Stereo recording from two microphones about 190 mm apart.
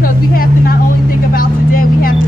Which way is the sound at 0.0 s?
50° left (ahead or behind).